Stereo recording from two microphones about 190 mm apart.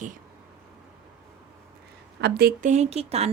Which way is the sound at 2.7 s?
35° right (ahead or behind).